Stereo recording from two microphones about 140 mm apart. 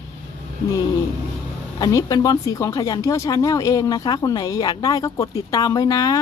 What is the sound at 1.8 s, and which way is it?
Speech, 25° left (ahead or behind).